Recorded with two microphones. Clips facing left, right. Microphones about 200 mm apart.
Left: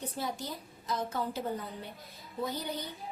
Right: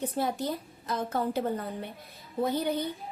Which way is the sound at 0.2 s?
60° right (ahead or behind).